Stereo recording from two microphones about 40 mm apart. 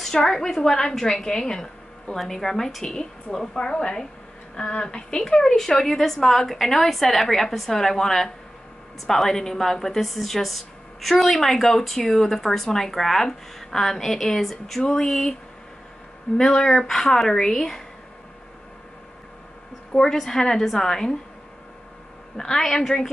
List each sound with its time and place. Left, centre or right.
0.0 s a woman's voice: centre
2.8 s a woman's voice: centre
16.3 s a woman's voice: centre
20.0 s a woman's voice: centre
22.4 s a woman's voice: centre